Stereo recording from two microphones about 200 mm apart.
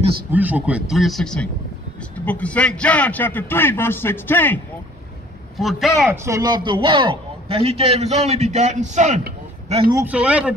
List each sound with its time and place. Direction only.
0.3 s a man's voice: 10° right (ahead or behind); by 4.6 s 10° left (ahead or behind)
5.6 s a man's voice: centre (ahead or behind)
6.1 s a man's voice: 15° right (ahead or behind)
9.9 s a man's voice: 5° right (ahead or behind)